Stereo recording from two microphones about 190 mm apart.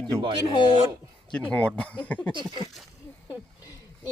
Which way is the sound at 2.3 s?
25° right (ahead or behind).